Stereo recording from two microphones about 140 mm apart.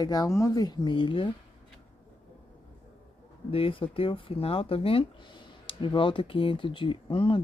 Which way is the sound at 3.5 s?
40° left (ahead or behind).